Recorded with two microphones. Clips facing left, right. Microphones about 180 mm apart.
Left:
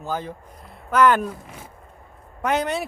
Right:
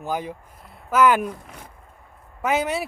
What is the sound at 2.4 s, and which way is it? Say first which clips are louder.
Speech: even; 5° right (ahead or behind).